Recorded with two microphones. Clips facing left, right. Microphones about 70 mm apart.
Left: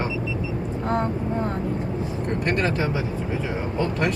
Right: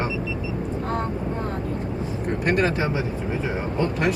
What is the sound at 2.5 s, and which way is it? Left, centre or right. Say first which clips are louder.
Speech: right 3 dB; centre.